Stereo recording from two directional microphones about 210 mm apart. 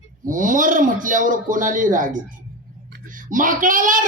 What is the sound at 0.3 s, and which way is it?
A man's voice, 40° right (ahead or behind).